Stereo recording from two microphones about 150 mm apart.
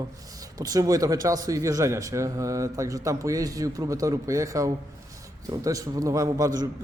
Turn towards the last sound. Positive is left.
turn(degrees=-25)  # may be behind; listen again after turning